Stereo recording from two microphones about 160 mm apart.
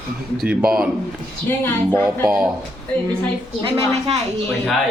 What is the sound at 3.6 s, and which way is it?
Speech, 40° right (ahead or behind).